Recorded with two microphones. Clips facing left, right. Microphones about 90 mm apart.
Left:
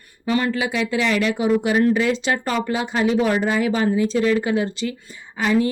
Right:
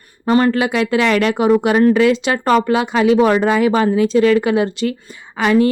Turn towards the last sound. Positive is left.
turn(degrees=-70)  # may be behind; listen again after turning